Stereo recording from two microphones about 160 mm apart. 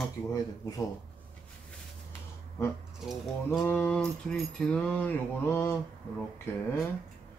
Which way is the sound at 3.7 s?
10° left (ahead or behind).